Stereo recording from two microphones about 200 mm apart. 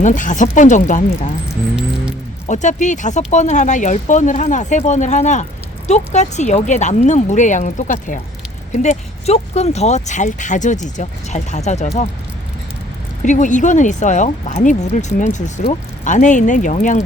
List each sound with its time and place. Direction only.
0.0 s speech: 40° left (ahead or behind)
2.5 s speech: 35° left (ahead or behind)
13.2 s speech: 40° left (ahead or behind)